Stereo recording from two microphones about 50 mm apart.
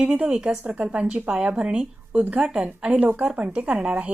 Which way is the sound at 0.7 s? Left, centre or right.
Right.